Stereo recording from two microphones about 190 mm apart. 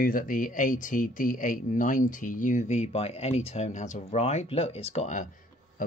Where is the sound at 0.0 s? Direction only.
45° left (ahead or behind).